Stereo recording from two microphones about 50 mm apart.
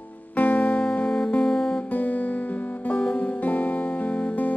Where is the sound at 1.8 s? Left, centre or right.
Left.